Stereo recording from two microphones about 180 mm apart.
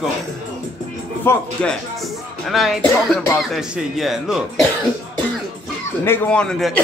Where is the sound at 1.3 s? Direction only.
10° left (ahead or behind).